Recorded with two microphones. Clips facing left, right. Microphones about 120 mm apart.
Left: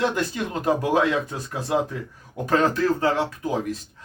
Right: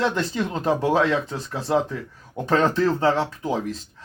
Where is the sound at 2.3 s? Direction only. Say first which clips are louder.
Right 1 dB; 25° right (ahead or behind).